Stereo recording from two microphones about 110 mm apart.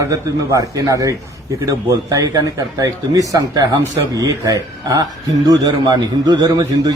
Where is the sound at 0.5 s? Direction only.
30° right (ahead or behind).